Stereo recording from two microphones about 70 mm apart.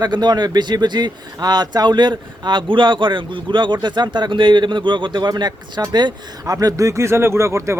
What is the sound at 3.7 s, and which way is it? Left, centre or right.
Speech, right.